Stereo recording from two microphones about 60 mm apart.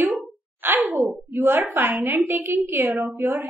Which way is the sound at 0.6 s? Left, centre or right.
Right.